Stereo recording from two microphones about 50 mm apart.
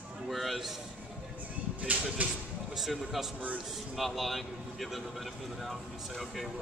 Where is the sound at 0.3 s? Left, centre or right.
Centre.